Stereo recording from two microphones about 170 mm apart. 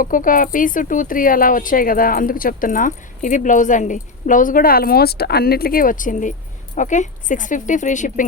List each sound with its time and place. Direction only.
0.0 s speech: 55° left (ahead or behind)